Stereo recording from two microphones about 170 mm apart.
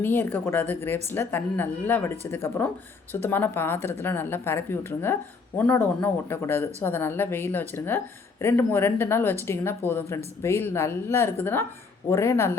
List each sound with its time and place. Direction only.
0.0 s a woman's voice: 10° left (ahead or behind)